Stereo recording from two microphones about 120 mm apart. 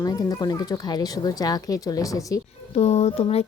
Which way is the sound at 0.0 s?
30° left (ahead or behind).